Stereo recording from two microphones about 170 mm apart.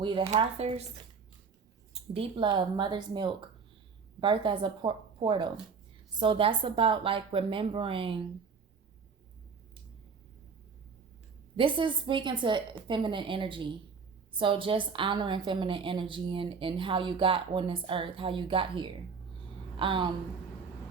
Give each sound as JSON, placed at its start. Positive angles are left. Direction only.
{"t": 0.0, "sound": "a woman's voice", "side_deg": -30}
{"t": 11.5, "sound": "a woman's voice", "side_deg": -30}